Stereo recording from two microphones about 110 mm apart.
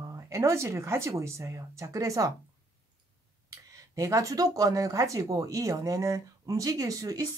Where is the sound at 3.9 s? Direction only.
30° right (ahead or behind).